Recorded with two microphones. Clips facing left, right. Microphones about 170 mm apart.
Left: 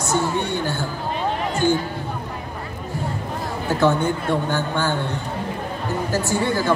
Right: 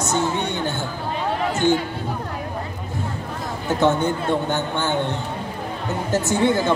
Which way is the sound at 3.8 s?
20° right (ahead or behind).